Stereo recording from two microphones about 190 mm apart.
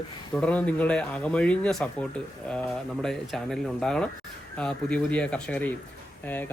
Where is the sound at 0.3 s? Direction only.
5° left (ahead or behind).